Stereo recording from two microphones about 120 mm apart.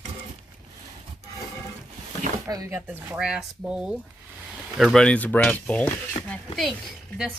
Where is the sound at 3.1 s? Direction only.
5° right (ahead or behind).